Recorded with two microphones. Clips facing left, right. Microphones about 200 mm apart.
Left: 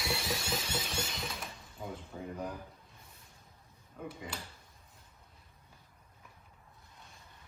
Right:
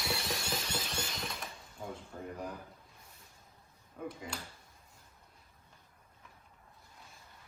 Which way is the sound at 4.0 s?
5° right (ahead or behind).